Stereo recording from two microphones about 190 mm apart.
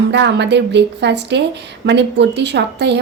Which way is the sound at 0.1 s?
65° right (ahead or behind).